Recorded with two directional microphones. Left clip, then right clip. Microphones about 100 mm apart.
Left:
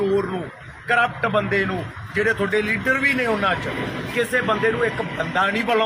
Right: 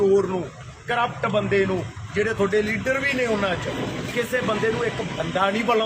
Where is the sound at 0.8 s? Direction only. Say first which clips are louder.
Left 4 dB; 40° right (ahead or behind).